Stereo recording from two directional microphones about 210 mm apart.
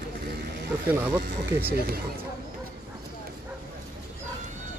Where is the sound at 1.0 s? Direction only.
10° right (ahead or behind).